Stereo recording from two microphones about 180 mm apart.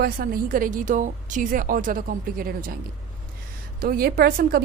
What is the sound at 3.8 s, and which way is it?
Speech, 55° right (ahead or behind).